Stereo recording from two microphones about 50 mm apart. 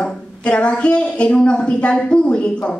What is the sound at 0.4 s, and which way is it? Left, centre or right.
A woman's voice, left.